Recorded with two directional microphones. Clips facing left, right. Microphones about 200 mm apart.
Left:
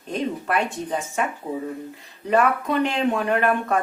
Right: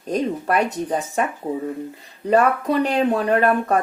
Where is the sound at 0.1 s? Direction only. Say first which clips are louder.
Right 4 dB; 40° right (ahead or behind).